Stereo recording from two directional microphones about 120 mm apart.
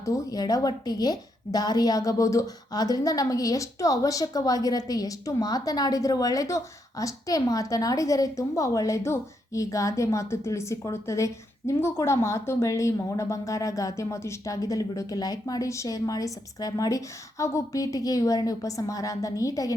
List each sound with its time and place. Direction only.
0.0 s a woman's voice: 30° left (ahead or behind)